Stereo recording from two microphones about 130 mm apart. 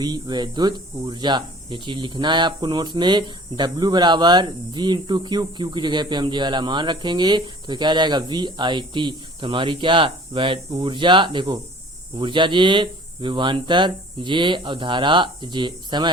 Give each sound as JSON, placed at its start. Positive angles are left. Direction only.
{"t": 0.0, "sound": "speech", "side_deg": -35}